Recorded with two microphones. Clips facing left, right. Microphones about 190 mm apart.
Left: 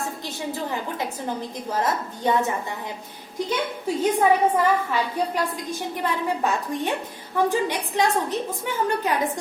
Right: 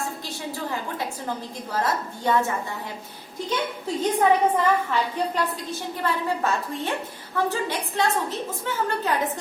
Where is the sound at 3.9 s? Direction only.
10° left (ahead or behind).